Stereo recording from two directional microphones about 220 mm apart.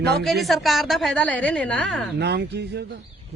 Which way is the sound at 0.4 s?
Centre (ahead or behind).